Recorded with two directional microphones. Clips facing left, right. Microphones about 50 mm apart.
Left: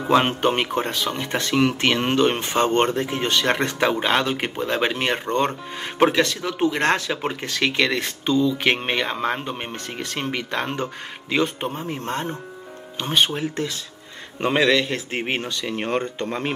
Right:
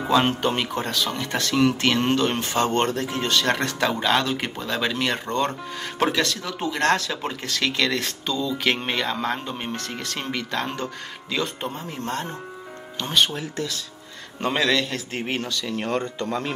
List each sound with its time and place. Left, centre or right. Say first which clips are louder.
0.1 s speech: left 2 dB; left